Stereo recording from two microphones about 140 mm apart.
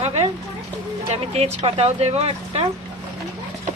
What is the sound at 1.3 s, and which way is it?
Speech, 45° right (ahead or behind).